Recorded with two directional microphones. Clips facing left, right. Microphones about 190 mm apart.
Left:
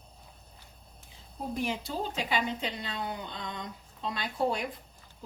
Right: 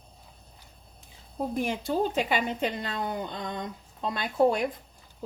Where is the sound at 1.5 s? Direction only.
50° right (ahead or behind).